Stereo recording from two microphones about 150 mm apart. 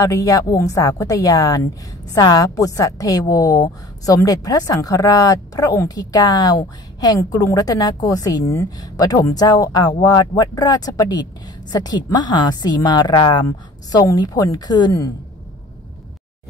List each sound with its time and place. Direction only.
0.0 s a woman's voice: 20° left (ahead or behind)